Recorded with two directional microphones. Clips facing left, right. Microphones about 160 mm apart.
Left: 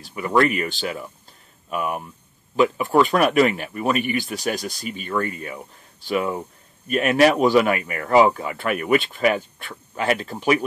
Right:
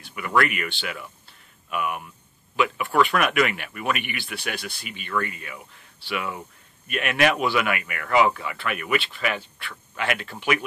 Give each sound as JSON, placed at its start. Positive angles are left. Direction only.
{"t": 0.0, "sound": "speech", "side_deg": 35}